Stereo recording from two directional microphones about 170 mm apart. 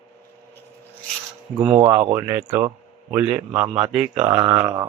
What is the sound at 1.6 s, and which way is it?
Speech, 30° right (ahead or behind).